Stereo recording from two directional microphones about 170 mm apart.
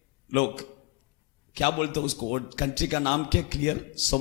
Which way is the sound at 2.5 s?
5° left (ahead or behind).